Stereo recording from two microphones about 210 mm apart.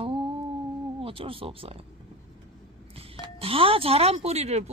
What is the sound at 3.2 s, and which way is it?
Speech, 25° right (ahead or behind).